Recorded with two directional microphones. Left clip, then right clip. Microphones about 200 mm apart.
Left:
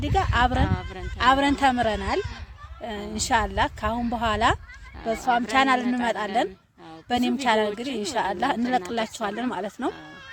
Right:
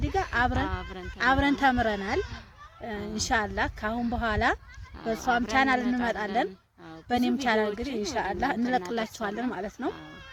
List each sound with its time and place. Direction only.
0.0 s a sound: 20° left (ahead or behind)
1.2 s speech: 15° left (ahead or behind)
5.0 s speech: 5° left (ahead or behind); by 9.9 s 25° left (ahead or behind)